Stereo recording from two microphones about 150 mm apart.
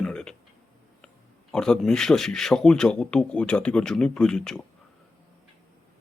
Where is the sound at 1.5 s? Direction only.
5° left (ahead or behind).